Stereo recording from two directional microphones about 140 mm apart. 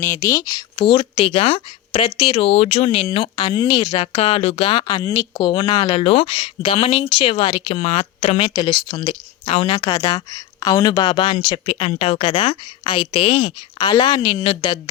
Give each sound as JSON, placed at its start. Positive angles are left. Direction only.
{"t": 0.0, "sound": "speech", "side_deg": 20}
{"t": 8.4, "sound": "speech", "side_deg": 35}
{"t": 11.6, "sound": "speech", "side_deg": 45}